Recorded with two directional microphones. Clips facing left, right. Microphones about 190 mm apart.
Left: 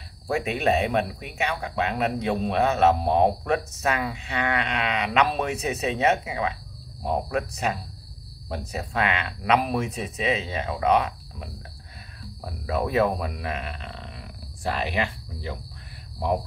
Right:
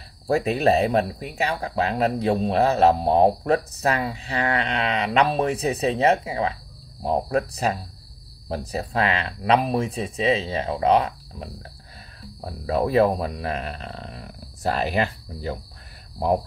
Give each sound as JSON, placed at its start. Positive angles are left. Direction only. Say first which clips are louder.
{"t": 0.3, "sound": "speech", "louder": "right 4 dB", "side_deg": -35}